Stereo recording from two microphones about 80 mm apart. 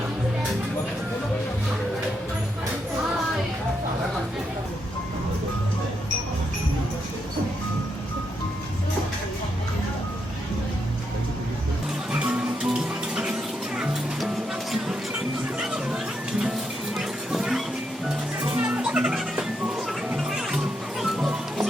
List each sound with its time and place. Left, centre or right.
12.1 s music: centre
17.0 s music: centre
18.5 s music: right; by 21.7 s centre